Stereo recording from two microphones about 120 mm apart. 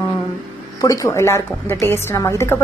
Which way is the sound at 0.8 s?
25° left (ahead or behind).